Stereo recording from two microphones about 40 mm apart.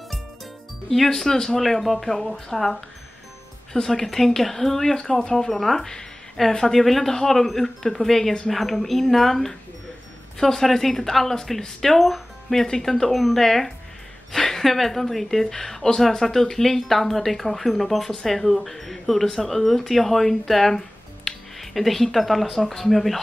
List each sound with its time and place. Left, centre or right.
0.8 s speech: centre
5.9 s a sound: centre
6.7 s speech: centre